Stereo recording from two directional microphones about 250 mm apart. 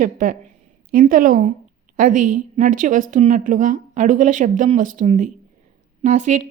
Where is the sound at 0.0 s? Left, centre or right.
Right.